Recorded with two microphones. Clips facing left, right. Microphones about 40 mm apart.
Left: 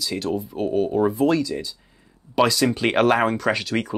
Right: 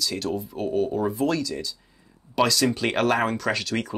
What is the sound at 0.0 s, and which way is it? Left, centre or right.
Speech, centre.